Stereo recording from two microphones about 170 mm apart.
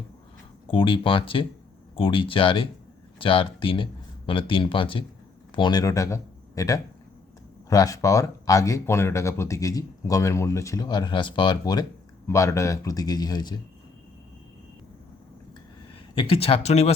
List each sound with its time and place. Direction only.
0.7 s speech: 30° left (ahead or behind)
16.1 s speech: 35° left (ahead or behind)